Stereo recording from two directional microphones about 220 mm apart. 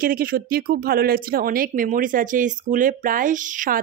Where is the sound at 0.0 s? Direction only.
40° right (ahead or behind).